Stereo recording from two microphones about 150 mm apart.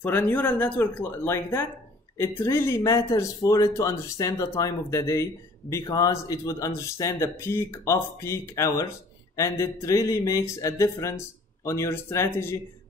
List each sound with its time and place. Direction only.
0.0 s speech: 10° left (ahead or behind)